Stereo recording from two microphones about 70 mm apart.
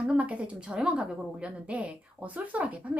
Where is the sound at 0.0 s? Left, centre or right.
Centre.